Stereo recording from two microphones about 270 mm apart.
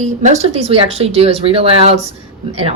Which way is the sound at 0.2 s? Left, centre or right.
Right.